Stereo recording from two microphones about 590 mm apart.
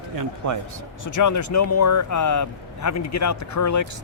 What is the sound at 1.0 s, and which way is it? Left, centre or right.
Speech, left.